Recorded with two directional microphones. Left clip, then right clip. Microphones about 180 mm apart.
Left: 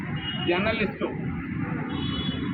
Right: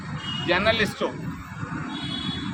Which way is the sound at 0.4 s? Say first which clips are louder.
Right 4 dB; 15° right (ahead or behind).